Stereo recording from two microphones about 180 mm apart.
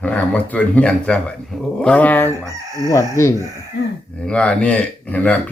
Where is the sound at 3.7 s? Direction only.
75° left (ahead or behind).